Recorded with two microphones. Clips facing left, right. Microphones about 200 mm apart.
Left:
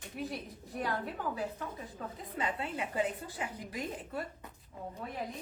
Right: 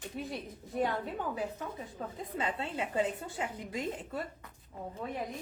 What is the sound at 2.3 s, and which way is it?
A woman's voice, 25° right (ahead or behind).